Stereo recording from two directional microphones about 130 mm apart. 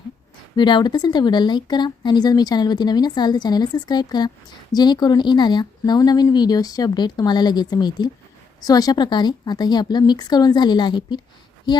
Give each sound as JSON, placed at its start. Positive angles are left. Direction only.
{"t": 0.5, "sound": "a woman's voice", "side_deg": 35}